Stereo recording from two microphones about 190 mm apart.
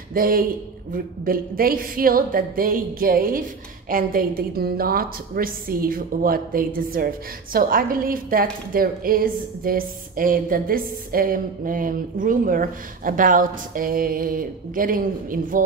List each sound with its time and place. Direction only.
0.1 s a woman's voice: 50° right (ahead or behind)